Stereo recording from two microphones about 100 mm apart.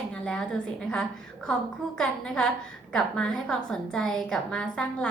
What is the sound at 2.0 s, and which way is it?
A woman's voice, 5° left (ahead or behind).